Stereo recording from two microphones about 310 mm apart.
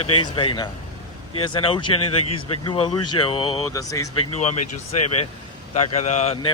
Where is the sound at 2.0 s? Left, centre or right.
Left.